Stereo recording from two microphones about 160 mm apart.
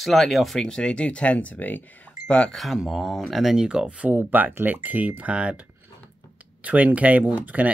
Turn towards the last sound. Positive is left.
turn(degrees=-10)  # may be behind; listen again after turning